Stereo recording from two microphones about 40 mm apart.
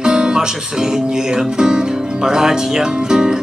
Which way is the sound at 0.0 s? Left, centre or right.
Centre.